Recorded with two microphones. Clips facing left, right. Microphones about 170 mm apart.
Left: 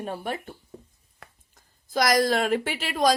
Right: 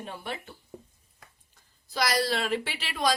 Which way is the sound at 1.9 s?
50° left (ahead or behind).